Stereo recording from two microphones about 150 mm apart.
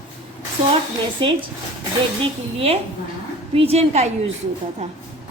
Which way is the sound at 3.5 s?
40° right (ahead or behind).